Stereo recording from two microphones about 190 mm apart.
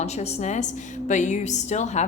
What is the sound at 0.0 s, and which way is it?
A woman's voice, 35° left (ahead or behind).